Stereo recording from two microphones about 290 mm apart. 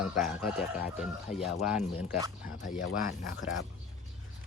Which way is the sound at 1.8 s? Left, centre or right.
Left.